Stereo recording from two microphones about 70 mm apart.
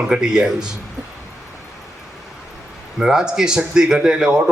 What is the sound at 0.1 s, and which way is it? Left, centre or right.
Speech, centre.